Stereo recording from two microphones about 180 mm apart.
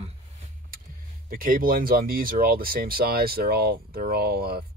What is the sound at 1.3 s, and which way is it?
Speech, 50° right (ahead or behind).